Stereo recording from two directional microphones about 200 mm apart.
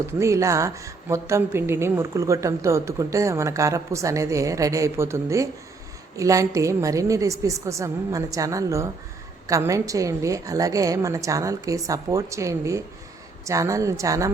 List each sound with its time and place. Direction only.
0.2 s a woman's voice: 15° right (ahead or behind)